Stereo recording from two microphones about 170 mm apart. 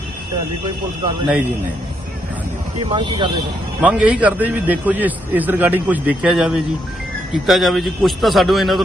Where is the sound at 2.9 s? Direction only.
30° right (ahead or behind).